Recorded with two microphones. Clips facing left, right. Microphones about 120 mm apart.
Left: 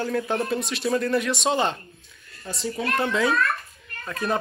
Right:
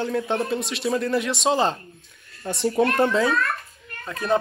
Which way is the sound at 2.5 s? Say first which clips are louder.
Right 7 dB; 60° right (ahead or behind).